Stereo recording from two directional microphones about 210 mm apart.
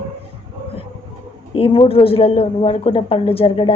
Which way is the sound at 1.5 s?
25° left (ahead or behind).